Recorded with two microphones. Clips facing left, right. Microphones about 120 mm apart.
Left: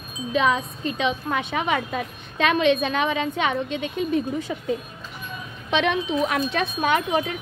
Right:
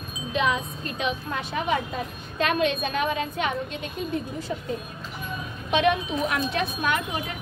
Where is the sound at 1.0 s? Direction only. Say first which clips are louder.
Left 4 dB; 90° left.